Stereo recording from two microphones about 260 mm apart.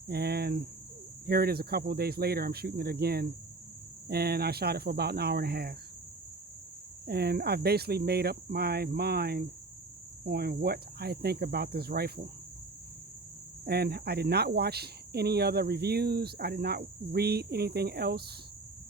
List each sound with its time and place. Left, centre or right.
0.1 s speech: right
7.1 s speech: right
13.7 s speech: right